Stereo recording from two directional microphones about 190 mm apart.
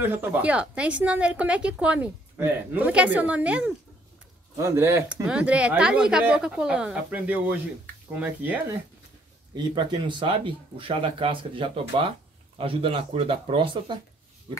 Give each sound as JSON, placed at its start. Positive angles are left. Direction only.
{"t": 0.0, "sound": "speech", "side_deg": -10}
{"t": 9.6, "sound": "speech", "side_deg": -25}